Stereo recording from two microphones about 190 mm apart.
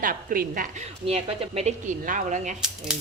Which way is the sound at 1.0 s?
35° right (ahead or behind).